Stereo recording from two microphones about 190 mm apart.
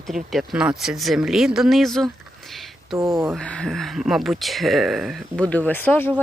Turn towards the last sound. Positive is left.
turn(degrees=10)  # may be behind; listen again after turning